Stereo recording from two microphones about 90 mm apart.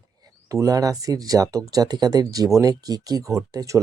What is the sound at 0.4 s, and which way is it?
Speech, 40° right (ahead or behind).